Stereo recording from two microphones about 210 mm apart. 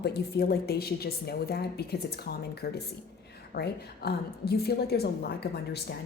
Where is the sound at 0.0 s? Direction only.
50° left (ahead or behind).